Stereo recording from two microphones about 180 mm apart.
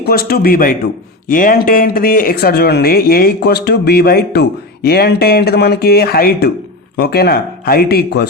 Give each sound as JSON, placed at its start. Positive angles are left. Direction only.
{"t": 0.0, "sound": "speech", "side_deg": 55}